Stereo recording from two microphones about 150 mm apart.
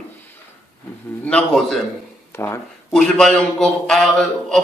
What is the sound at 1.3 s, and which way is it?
Speech, 5° left (ahead or behind).